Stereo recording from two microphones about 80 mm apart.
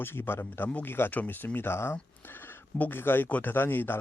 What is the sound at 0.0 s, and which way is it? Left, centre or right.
A man's voice, left.